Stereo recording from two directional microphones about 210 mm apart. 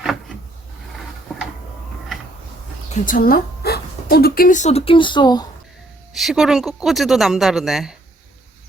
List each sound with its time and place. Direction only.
3.1 s speech: 45° left (ahead or behind); by 5.5 s 20° left (ahead or behind)
6.1 s speech: centre (ahead or behind)